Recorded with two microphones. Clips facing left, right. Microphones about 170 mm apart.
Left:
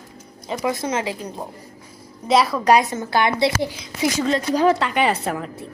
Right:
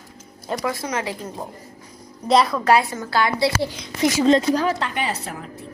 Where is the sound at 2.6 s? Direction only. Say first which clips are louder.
Left 1 dB; 20° left (ahead or behind).